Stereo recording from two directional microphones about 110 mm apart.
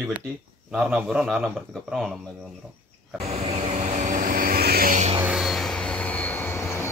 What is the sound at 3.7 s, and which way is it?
Vehicle, 90° right.